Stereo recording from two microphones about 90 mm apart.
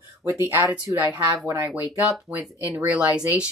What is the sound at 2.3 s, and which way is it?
Speech, 15° right (ahead or behind).